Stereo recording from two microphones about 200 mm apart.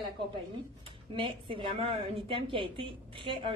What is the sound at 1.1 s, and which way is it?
A woman's voice, 25° right (ahead or behind).